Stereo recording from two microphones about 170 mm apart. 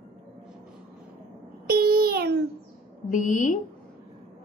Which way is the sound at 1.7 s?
65° right (ahead or behind).